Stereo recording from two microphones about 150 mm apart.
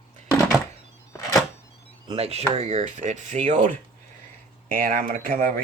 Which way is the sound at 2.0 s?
45° right (ahead or behind).